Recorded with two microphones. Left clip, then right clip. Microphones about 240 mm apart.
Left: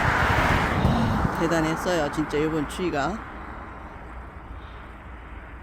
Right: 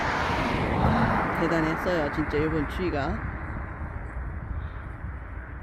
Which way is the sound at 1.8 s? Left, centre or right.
Centre.